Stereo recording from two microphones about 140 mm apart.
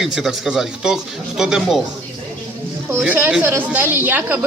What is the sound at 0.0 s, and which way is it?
Speech, 5° right (ahead or behind).